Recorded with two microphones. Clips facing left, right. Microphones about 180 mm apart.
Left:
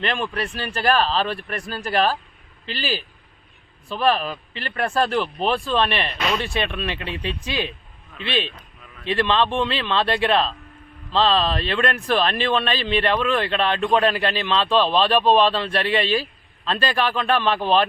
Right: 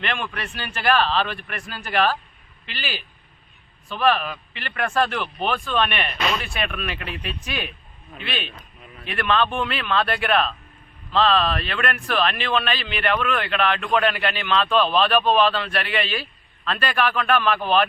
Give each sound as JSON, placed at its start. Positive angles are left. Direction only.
{"t": 0.0, "sound": "speech", "side_deg": 35}